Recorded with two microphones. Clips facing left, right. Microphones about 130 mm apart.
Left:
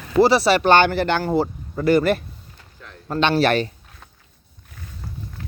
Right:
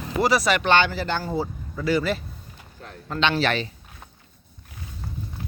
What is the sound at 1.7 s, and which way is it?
Speech, 55° left (ahead or behind).